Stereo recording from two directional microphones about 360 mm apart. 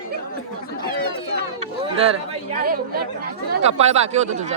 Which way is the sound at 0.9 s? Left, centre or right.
Left.